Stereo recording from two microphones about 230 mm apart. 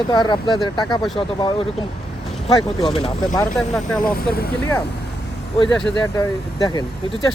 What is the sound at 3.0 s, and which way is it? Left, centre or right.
Speech, centre.